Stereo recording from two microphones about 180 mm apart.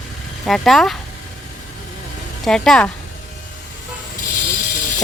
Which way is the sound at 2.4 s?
5° left (ahead or behind).